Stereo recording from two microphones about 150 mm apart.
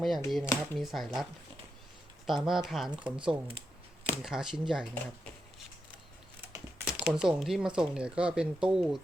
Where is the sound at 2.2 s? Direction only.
Centre (ahead or behind).